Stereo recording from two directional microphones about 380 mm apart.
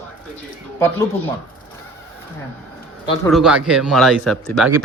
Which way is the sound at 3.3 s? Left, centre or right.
Centre.